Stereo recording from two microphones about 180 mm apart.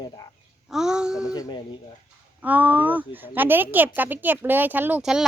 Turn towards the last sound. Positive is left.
turn(degrees=-5)  # may be behind; listen again after turning